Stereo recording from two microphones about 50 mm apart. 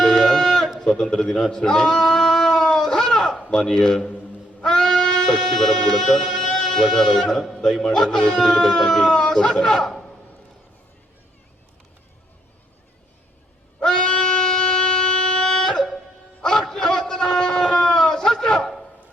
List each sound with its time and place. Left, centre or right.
0.0 s a sound: centre
0.8 s speech: centre
1.5 s bleat: centre
3.4 s speech: centre
13.8 s music: centre
16.4 s a sound: centre